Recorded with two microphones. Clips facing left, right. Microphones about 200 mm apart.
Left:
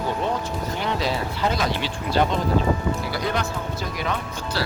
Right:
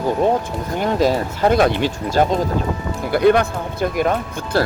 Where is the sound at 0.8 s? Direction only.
45° right (ahead or behind).